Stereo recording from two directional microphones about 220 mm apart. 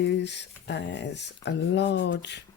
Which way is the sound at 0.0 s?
50° left (ahead or behind).